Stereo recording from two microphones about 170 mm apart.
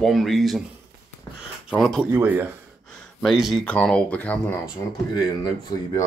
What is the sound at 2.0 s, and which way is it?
Speech, 10° right (ahead or behind).